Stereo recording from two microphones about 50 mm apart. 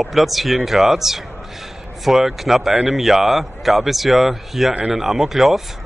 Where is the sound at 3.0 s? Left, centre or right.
Centre.